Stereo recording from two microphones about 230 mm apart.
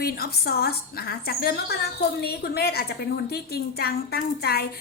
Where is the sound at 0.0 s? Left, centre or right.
Left.